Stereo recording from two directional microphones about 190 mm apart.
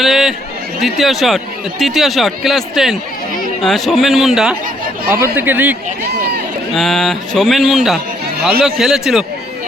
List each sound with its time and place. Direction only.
0.0 s a sound: centre (ahead or behind)
0.8 s a man's voice: centre (ahead or behind)
6.7 s a man's voice: centre (ahead or behind)